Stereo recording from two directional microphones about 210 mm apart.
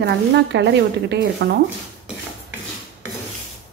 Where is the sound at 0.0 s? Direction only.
55° right (ahead or behind).